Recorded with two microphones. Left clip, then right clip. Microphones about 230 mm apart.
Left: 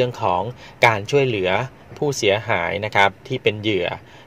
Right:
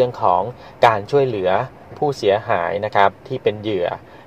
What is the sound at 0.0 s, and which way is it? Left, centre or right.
Speech, left.